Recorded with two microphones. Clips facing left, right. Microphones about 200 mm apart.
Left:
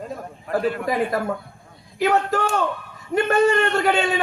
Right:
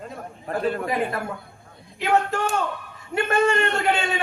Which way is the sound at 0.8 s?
35° left (ahead or behind).